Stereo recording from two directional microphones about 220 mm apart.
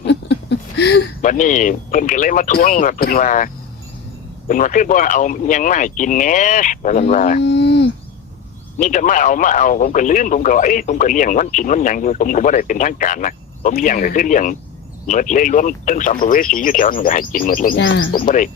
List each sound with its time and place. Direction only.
0.0 s a sound: 50° left (ahead or behind)
1.2 s speech: 35° left (ahead or behind)
7.4 s livestock: 50° left (ahead or behind)
8.8 s speech: 35° left (ahead or behind)
17.7 s speech: 55° left (ahead or behind)
18.1 s speech: 40° left (ahead or behind)